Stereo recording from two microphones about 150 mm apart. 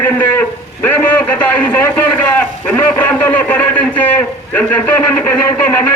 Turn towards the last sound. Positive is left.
turn(degrees=10)  # may be behind; listen again after turning